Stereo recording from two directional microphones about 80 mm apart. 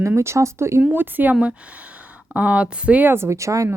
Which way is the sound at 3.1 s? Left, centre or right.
Right.